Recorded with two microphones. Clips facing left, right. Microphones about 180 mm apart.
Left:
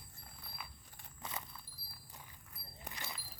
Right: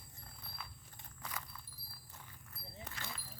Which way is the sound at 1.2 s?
25° left (ahead or behind).